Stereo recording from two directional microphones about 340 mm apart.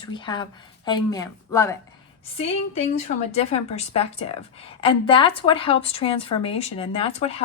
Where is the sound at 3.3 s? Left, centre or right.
Centre.